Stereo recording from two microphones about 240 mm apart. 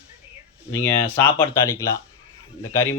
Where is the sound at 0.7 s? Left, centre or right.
Centre.